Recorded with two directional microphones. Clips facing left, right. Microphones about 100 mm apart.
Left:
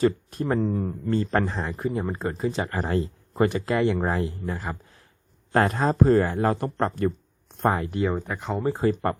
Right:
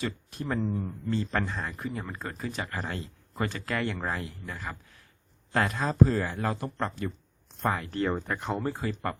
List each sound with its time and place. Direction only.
0.0 s speech: 40° left (ahead or behind)
0.6 s a man's voice: 60° left (ahead or behind); by 4.8 s 30° left (ahead or behind)
5.5 s speech: 45° left (ahead or behind)
7.9 s speech: 15° left (ahead or behind)
8.1 s speech: centre (ahead or behind)
9.0 s a man's voice: 40° left (ahead or behind)